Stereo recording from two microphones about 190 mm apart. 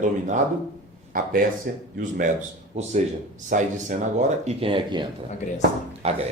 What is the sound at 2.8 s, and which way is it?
Speech, 35° right (ahead or behind).